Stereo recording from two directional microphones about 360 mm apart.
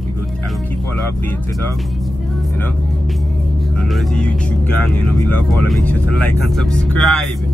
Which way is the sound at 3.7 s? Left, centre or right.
Centre.